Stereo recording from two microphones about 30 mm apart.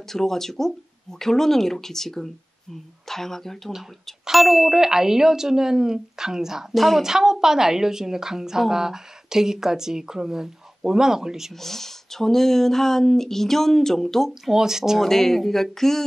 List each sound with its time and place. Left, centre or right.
0.1 s speech: centre
4.3 s a woman's voice: centre
4.7 s a woman's voice: centre
6.7 s speech: centre
7.0 s a woman's voice: centre
11.6 s speech: centre
14.4 s a woman's voice: centre
15.0 s speech: centre